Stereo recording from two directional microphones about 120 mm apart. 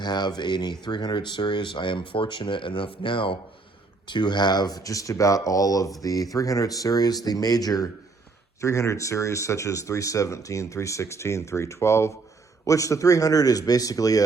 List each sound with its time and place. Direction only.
0.0 s speech: 35° left (ahead or behind)